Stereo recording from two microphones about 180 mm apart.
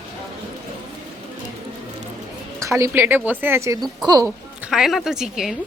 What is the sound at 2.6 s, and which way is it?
Speech, 15° right (ahead or behind).